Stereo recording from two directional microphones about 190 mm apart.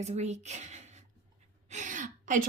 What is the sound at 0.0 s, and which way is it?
A woman's voice, 35° right (ahead or behind).